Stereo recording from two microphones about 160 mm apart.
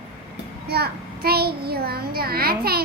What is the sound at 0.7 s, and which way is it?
A child's voice, 80° right.